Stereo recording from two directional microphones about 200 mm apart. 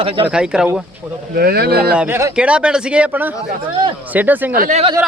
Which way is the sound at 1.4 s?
50° right (ahead or behind).